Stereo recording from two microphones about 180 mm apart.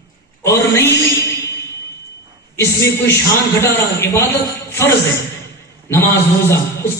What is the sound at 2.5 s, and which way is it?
A man's voice, 15° left (ahead or behind).